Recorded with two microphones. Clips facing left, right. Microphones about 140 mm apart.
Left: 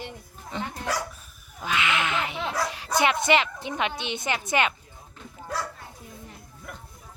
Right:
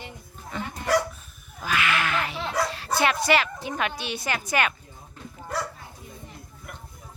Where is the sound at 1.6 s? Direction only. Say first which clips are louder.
Right 1 dB; 20° left (ahead or behind).